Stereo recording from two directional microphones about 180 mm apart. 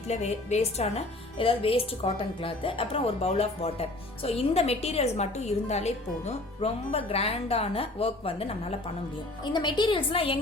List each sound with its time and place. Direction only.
0.1 s a woman's voice: 40° left (ahead or behind)